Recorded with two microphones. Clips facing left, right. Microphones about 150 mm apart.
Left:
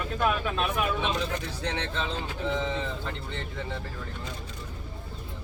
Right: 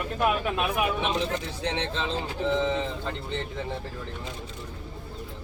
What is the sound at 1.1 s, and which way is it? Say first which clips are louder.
Speech: right 2 dB; 25° right (ahead or behind).